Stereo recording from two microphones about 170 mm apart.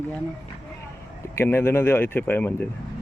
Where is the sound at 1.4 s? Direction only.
15° left (ahead or behind).